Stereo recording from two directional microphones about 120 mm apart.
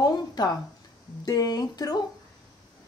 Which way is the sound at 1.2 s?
30° left (ahead or behind).